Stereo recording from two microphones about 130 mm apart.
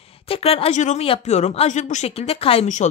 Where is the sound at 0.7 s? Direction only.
65° left (ahead or behind).